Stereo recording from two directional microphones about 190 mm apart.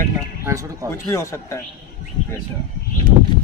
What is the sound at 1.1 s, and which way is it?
Speech, 15° left (ahead or behind).